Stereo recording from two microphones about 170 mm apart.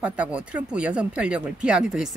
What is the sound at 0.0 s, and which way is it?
Speech, 5° right (ahead or behind).